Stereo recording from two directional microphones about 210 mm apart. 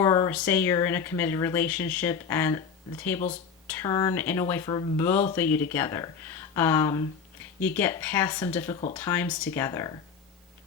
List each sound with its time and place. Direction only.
0.0 s a sound: 20° left (ahead or behind)
0.3 s speech: 10° left (ahead or behind)
8.7 s speech: 25° left (ahead or behind)
9.0 s speech: 10° left (ahead or behind)